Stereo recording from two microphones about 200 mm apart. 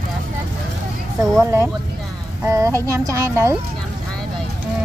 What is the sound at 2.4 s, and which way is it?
Speech, 15° right (ahead or behind).